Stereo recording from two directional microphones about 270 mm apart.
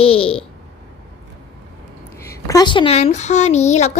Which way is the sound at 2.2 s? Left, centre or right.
Centre.